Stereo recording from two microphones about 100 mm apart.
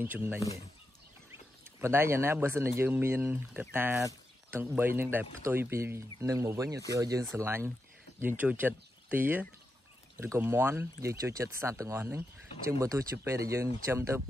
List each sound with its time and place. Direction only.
0.0 s speech: 20° right (ahead or behind)
1.3 s a sound: 25° right (ahead or behind)
2.3 s speech: 25° right (ahead or behind)